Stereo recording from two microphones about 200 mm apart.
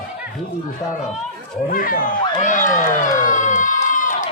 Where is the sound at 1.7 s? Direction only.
45° left (ahead or behind).